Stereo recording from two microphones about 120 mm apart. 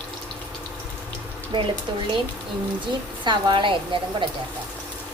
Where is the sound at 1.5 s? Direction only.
35° right (ahead or behind).